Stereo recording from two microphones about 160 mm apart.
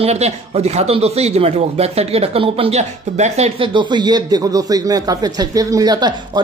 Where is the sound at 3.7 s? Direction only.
30° right (ahead or behind).